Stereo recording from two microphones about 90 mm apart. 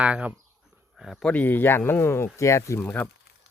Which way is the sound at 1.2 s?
15° left (ahead or behind).